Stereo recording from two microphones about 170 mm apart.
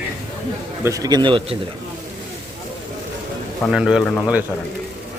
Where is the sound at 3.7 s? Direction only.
5° right (ahead or behind).